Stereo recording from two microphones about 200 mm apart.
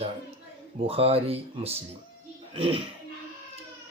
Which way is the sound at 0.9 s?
30° right (ahead or behind).